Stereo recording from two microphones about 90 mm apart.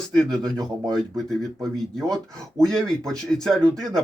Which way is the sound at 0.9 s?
5° left (ahead or behind).